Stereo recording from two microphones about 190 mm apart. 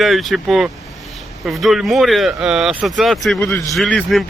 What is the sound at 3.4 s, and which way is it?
Speech, 15° left (ahead or behind).